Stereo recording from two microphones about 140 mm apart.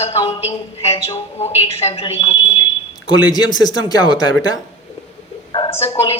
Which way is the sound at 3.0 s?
30° left (ahead or behind).